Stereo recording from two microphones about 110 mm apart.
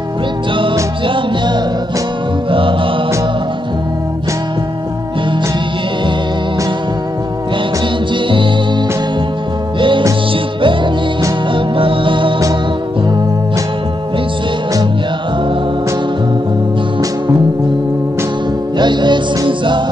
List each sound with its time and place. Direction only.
1.0 s music: 45° right (ahead or behind)
9.8 s music: 50° right (ahead or behind)
18.8 s music: 45° right (ahead or behind)